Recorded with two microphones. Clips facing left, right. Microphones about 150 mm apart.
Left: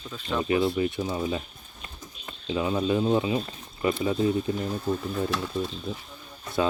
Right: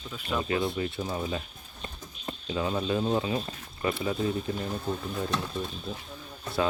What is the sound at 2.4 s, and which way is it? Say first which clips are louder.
Speech: left 4 dB; 15° left (ahead or behind).